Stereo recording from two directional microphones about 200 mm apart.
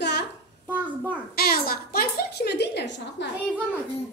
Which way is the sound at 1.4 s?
50° left (ahead or behind).